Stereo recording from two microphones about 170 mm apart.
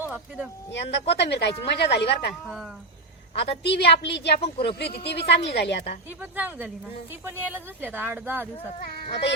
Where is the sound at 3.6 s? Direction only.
85° left.